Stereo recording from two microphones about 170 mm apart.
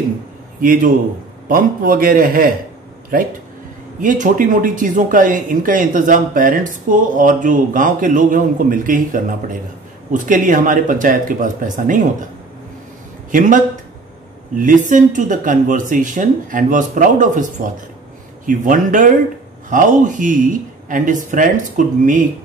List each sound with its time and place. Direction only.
0.6 s a man's voice: 55° right (ahead or behind)
13.3 s speech: 50° right (ahead or behind)